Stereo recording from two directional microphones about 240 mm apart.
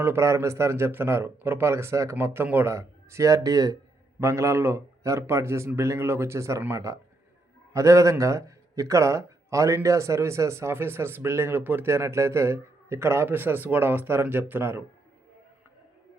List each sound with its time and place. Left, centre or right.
0.0 s speech: centre